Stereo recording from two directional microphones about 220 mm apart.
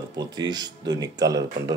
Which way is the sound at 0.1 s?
20° right (ahead or behind).